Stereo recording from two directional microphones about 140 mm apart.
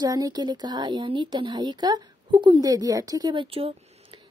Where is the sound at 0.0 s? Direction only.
25° right (ahead or behind).